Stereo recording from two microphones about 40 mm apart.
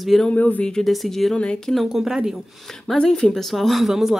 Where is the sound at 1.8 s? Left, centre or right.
Centre.